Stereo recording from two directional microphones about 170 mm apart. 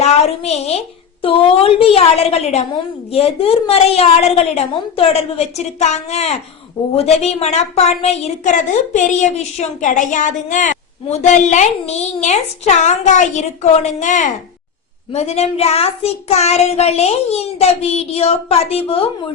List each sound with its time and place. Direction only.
0.0 s a woman's voice: 40° left (ahead or behind)
1.2 s child singing: 30° left (ahead or behind)
6.9 s speech: 40° left (ahead or behind)
15.1 s child singing: 40° left (ahead or behind)